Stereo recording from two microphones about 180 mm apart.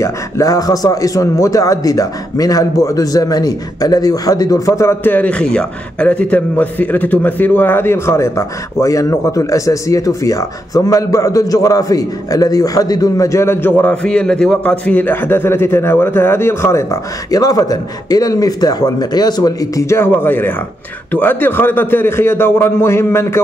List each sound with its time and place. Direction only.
0.0 s a man's voice: 20° left (ahead or behind)